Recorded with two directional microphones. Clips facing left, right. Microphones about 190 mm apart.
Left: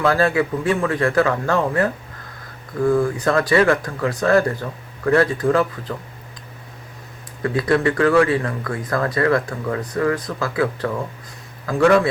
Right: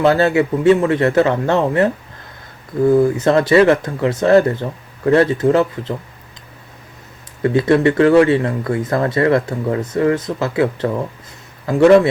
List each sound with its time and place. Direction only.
0.0 s speech: 25° right (ahead or behind)
7.4 s a man's voice: 25° right (ahead or behind)